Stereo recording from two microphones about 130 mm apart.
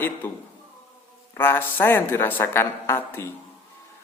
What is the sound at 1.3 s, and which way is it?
Speech, 15° left (ahead or behind).